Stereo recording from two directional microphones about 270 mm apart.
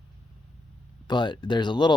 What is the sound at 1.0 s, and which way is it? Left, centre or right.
Speech, centre.